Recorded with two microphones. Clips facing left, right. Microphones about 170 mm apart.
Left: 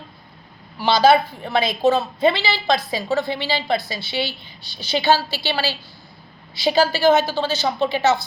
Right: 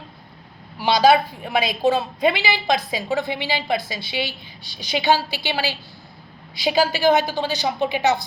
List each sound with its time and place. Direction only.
0.9 s a woman's voice: 10° right (ahead or behind)
6.7 s a woman's voice: 15° right (ahead or behind)